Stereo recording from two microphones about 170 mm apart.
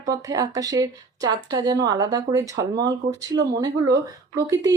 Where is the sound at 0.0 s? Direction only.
20° right (ahead or behind).